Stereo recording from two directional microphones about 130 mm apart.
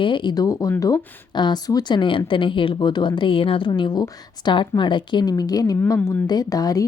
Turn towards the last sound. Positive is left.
turn(degrees=30)  # may be behind; listen again after turning